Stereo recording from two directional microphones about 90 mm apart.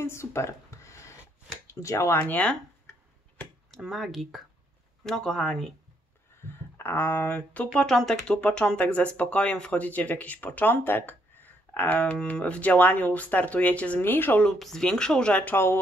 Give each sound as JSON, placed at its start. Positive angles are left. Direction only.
{"t": 0.0, "sound": "a sound", "side_deg": 30}
{"t": 1.7, "sound": "speech", "side_deg": 30}
{"t": 2.1, "sound": "speech", "side_deg": 20}
{"t": 3.7, "sound": "speech", "side_deg": 0}
{"t": 6.4, "sound": "speech", "side_deg": 25}
{"t": 14.4, "sound": "speech", "side_deg": 5}
{"t": 15.5, "sound": "speech", "side_deg": 25}